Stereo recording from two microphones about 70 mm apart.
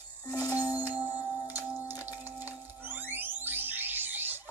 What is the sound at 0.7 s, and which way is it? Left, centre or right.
Music, right.